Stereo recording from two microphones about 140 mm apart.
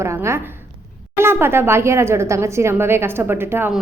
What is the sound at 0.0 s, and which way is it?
A woman's voice, 20° right (ahead or behind).